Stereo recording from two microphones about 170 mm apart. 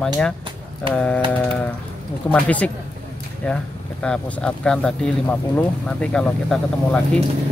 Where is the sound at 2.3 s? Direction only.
10° left (ahead or behind).